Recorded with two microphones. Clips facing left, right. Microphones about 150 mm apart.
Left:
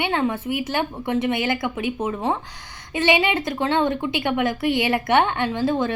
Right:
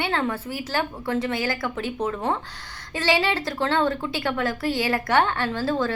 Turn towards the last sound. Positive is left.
turn(degrees=20)  # may be behind; listen again after turning